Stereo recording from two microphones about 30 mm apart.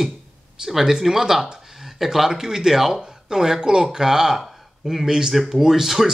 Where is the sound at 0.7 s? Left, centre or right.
Centre.